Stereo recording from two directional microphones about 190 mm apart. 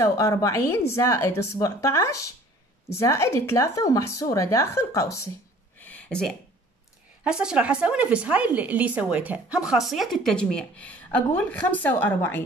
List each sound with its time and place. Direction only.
0.0 s speech: 15° left (ahead or behind)
5.8 s a sound: 10° left (ahead or behind)
7.2 s speech: 5° right (ahead or behind)